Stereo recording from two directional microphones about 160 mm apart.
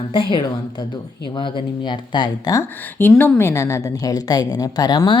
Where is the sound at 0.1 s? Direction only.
30° left (ahead or behind).